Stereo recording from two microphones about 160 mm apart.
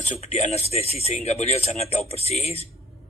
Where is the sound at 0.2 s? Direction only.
45° left (ahead or behind).